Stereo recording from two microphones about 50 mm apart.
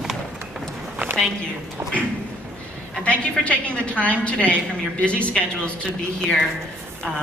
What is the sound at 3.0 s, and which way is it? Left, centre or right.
A woman's voice, left.